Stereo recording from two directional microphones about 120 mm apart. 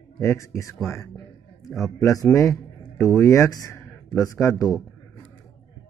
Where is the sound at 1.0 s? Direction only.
25° left (ahead or behind).